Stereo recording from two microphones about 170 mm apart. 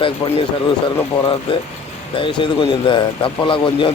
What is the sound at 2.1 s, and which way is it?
Speech, 30° left (ahead or behind).